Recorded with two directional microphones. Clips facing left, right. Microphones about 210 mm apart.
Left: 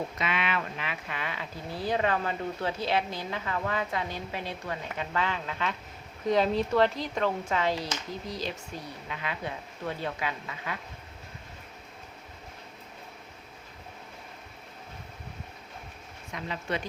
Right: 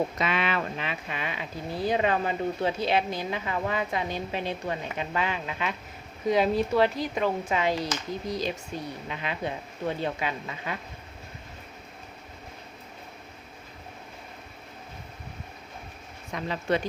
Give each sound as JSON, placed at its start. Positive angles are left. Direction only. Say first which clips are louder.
{"t": 0.2, "sound": "speech", "louder": "right 3 dB", "side_deg": -35}
{"t": 16.3, "sound": "speech", "louder": "right 6 dB", "side_deg": -35}